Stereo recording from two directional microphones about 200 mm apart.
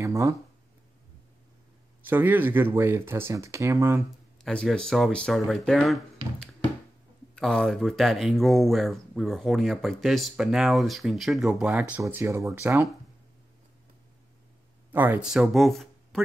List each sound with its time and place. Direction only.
0.0 s a sound: 15° right (ahead or behind)
2.0 s speech: 10° right (ahead or behind)
4.4 s speech: centre (ahead or behind)
7.3 s speech: centre (ahead or behind)
14.9 s speech: 10° right (ahead or behind)